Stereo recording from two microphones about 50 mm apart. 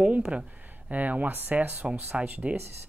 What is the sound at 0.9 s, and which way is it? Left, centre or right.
Speech, right.